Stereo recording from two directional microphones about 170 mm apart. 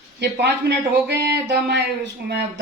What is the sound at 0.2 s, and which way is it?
Speech, 80° right.